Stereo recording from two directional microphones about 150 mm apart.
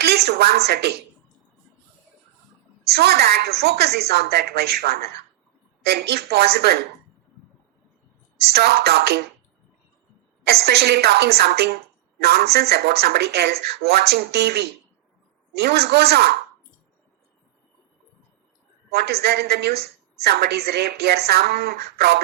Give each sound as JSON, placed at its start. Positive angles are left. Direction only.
{"t": 0.0, "sound": "speech", "side_deg": -90}
{"t": 2.8, "sound": "a woman's voice", "side_deg": -90}
{"t": 8.4, "sound": "a woman's voice", "side_deg": -90}
{"t": 10.4, "sound": "a woman's voice", "side_deg": -90}
{"t": 18.9, "sound": "a woman's voice", "side_deg": -90}